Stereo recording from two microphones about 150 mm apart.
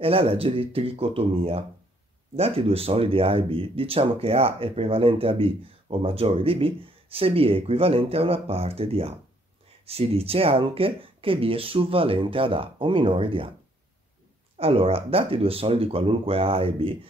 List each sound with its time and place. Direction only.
0.0 s speech: 40° right (ahead or behind)
14.6 s speech: 40° right (ahead or behind)